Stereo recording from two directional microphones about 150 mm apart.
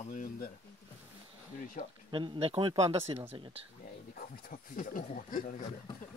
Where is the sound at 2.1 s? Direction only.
35° right (ahead or behind).